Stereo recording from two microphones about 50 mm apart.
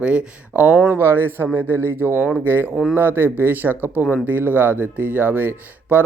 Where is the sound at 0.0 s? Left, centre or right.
Right.